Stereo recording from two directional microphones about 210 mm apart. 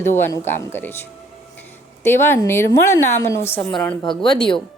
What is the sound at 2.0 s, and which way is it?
A woman's voice, 10° left (ahead or behind).